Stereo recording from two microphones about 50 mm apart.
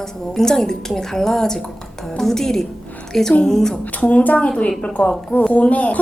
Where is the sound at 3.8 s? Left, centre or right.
Left.